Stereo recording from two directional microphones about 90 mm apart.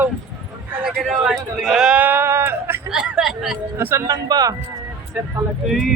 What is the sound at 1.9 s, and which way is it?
Speech, 20° right (ahead or behind).